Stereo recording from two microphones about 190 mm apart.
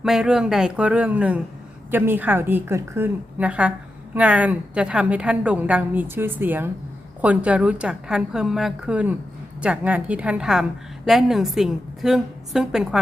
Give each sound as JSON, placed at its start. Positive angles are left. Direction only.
{"t": 0.0, "sound": "a woman's voice", "side_deg": -5}